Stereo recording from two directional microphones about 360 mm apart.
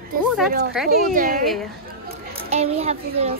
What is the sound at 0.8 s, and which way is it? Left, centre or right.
Speech, centre.